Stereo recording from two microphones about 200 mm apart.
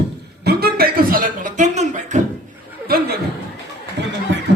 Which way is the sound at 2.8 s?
50° right (ahead or behind).